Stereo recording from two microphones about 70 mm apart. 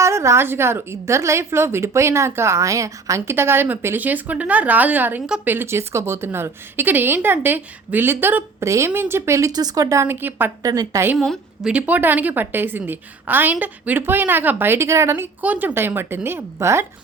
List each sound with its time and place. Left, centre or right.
0.0 s a woman's voice: right
3.2 s a woman's voice: right
8.6 s a woman's voice: right
8.9 s a woman's voice: right
9.5 s speech: right
10.0 s a woman's voice: right
10.6 s speech: right
11.6 s a woman's voice: centre
14.8 s a woman's voice: right
15.4 s a woman's voice: right